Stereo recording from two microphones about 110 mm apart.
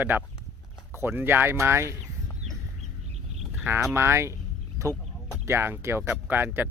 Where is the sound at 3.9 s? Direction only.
25° right (ahead or behind).